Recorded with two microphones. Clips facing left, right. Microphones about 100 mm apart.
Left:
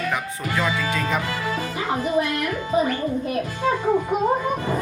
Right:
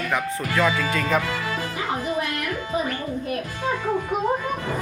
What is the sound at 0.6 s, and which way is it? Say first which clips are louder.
Speech: right 2 dB; 5° left (ahead or behind).